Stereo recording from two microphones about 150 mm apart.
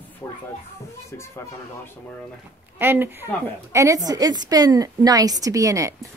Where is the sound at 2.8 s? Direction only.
15° right (ahead or behind).